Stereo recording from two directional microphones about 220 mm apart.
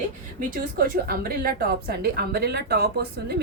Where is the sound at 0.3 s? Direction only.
40° right (ahead or behind).